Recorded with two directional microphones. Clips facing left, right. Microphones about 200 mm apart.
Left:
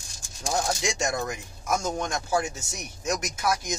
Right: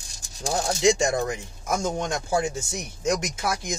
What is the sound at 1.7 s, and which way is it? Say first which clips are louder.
Speech: right 2 dB; 25° right (ahead or behind).